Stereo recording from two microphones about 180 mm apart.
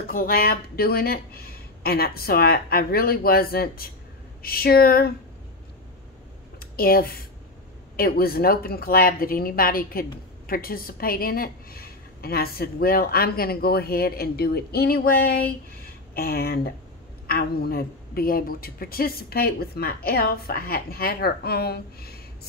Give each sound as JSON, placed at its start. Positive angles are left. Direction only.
{"t": 0.1, "sound": "a woman's voice", "side_deg": 55}
{"t": 6.6, "sound": "a woman's voice", "side_deg": 55}